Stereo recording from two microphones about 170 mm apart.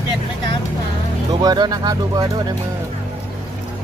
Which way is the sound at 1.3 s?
25° right (ahead or behind).